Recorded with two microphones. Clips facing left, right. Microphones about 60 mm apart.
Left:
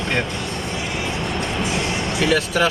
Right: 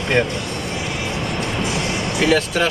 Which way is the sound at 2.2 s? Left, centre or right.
Centre.